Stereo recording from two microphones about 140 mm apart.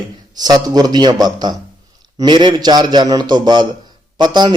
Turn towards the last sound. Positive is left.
turn(degrees=-30)  # may be behind; listen again after turning